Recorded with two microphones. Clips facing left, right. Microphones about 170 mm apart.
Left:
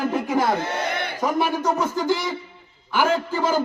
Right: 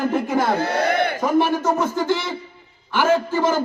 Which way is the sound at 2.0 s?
10° left (ahead or behind).